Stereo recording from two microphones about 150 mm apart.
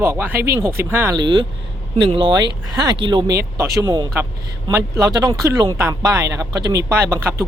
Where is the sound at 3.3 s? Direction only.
20° right (ahead or behind).